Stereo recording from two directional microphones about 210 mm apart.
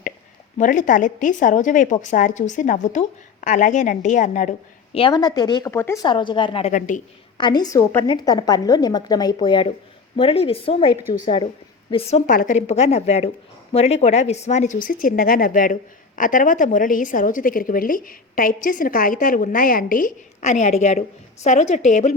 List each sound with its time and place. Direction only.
0.6 s a woman's voice: 40° left (ahead or behind)
7.3 s a woman's voice: 20° left (ahead or behind)
12.2 s a woman's voice: 40° left (ahead or behind)